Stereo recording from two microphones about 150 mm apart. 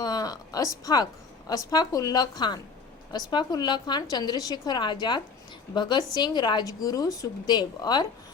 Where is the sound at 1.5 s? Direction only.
25° left (ahead or behind).